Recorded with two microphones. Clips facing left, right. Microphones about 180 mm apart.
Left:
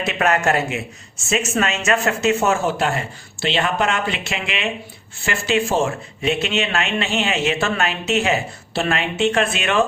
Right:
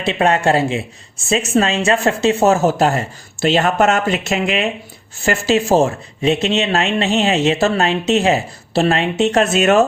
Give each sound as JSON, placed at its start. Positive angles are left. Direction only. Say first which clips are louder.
{"t": 0.0, "sound": "speech", "louder": "right 4 dB", "side_deg": -30}